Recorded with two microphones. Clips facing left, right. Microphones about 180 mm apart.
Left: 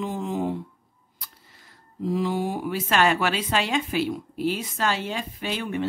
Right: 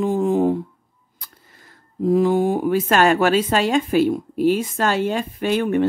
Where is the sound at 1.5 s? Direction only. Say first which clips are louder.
Right 7 dB; 50° right (ahead or behind).